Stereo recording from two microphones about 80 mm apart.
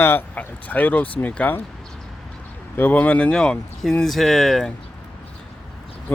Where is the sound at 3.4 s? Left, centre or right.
Centre.